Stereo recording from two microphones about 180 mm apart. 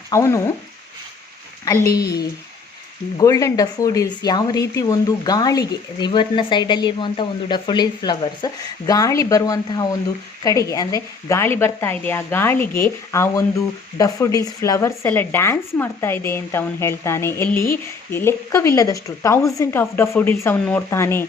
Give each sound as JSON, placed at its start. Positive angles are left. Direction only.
{"t": 0.1, "sound": "speech", "side_deg": 15}
{"t": 1.6, "sound": "speech", "side_deg": 20}
{"t": 3.2, "sound": "speech", "side_deg": 20}